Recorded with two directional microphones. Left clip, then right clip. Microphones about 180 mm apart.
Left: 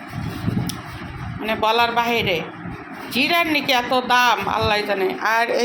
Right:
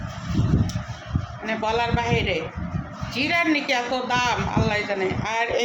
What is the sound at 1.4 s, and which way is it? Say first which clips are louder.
A woman's voice: left 6 dB; 20° left (ahead or behind).